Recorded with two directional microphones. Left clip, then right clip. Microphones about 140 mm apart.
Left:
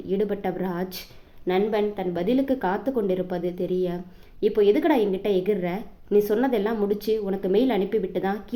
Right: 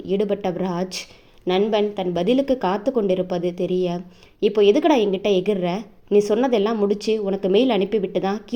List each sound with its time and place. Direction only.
0.1 s speech: 40° right (ahead or behind)